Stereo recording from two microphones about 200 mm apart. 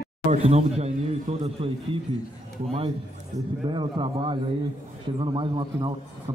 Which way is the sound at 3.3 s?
25° right (ahead or behind).